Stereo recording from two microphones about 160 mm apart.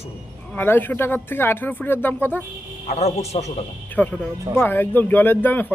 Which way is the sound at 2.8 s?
40° left (ahead or behind).